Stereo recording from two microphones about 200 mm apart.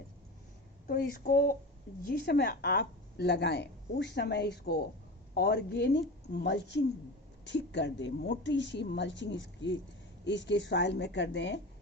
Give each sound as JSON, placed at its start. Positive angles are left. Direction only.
{"t": 0.9, "sound": "a woman's voice", "side_deg": 50}